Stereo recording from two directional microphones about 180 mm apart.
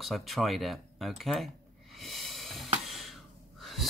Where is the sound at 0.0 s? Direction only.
Centre (ahead or behind).